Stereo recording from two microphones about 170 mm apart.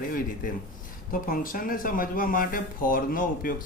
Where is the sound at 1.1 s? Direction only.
55° left (ahead or behind).